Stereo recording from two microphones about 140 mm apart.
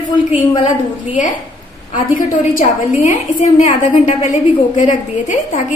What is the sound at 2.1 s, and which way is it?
Speech, 75° left (ahead or behind).